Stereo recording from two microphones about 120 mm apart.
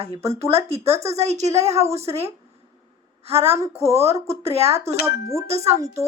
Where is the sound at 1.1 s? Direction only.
65° right (ahead or behind).